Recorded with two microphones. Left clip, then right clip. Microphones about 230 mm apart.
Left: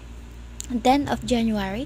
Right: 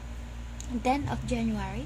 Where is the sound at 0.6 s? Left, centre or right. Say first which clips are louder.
Left 8 dB; left.